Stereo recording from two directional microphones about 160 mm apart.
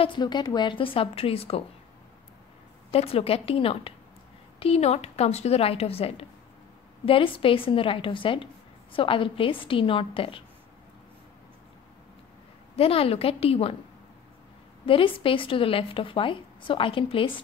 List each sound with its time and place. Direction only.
0.0 s a woman's voice: 30° left (ahead or behind)
2.9 s a woman's voice: 40° left (ahead or behind)
12.7 s a woman's voice: 35° left (ahead or behind)
14.9 s a woman's voice: 35° left (ahead or behind)